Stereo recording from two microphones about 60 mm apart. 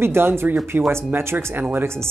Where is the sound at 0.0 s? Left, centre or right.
Right.